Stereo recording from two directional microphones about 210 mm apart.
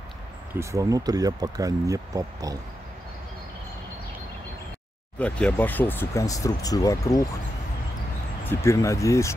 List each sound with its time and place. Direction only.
0.6 s speech: 15° right (ahead or behind)
5.2 s speech: 5° left (ahead or behind)
8.5 s speech: 10° left (ahead or behind)